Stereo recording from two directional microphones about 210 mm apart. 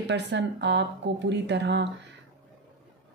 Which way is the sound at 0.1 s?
55° right (ahead or behind).